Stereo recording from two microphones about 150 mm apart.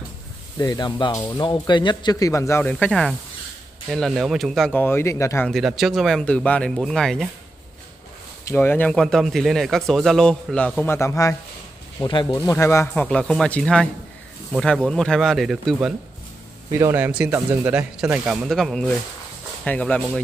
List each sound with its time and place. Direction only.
0.6 s speech: 25° left (ahead or behind); by 4.8 s 5° left (ahead or behind)
4.8 s speech: 15° left (ahead or behind)
5.5 s speech: centre (ahead or behind)
8.5 s speech: 15° left (ahead or behind)
12.0 s speech: 30° left (ahead or behind)
12.4 s speech: 20° left (ahead or behind); by 15.9 s centre (ahead or behind)
16.7 s speech: 15° right (ahead or behind); by 20.0 s 10° left (ahead or behind)